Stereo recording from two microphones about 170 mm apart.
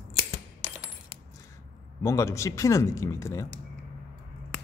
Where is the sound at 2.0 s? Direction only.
20° left (ahead or behind).